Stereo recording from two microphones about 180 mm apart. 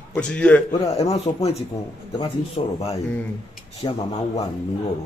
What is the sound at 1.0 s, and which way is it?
Speech, 35° left (ahead or behind).